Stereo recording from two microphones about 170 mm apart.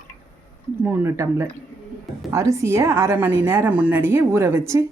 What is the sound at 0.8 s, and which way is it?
A woman's voice, 15° right (ahead or behind).